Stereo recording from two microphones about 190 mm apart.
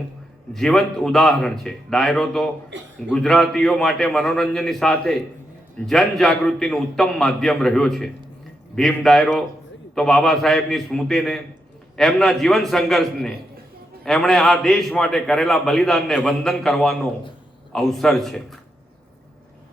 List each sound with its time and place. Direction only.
0.5 s a man's voice: 5° left (ahead or behind)
2.7 s a man's voice: 70° right (ahead or behind)
3.1 s a man's voice: 5° left (ahead or behind)